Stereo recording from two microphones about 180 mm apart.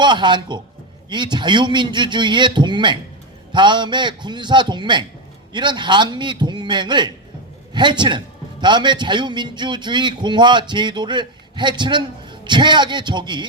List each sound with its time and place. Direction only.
0.0 s a man's voice: 25° right (ahead or behind)